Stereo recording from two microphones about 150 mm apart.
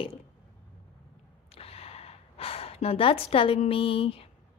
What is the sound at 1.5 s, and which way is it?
Gasp, 40° left (ahead or behind).